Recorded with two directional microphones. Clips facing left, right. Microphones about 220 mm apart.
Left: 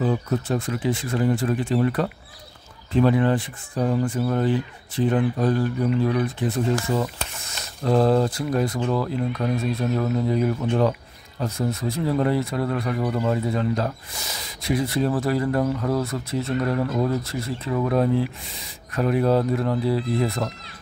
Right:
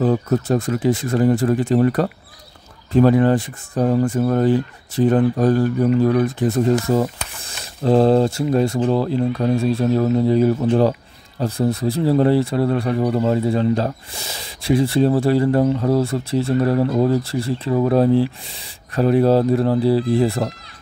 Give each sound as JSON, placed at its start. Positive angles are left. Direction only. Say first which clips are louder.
{"t": 0.0, "sound": "speech", "louder": "right 5 dB", "side_deg": -45}